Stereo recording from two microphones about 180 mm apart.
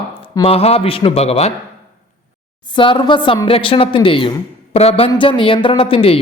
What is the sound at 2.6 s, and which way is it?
Speech, 25° left (ahead or behind).